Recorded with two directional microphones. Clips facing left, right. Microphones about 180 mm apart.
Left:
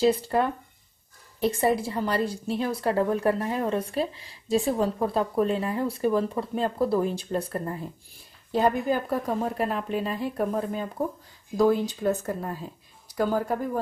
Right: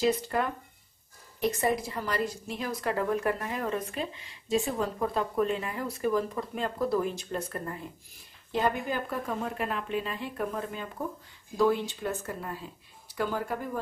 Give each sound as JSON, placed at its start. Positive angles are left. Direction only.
{"t": 0.0, "sound": "a woman's voice", "side_deg": 30}